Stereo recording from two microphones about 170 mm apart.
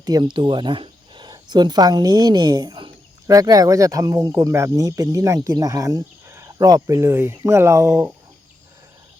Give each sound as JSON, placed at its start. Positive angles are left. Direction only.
{"t": 0.0, "sound": "speech", "side_deg": -25}